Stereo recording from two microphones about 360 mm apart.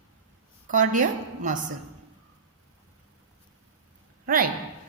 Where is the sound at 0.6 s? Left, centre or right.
Right.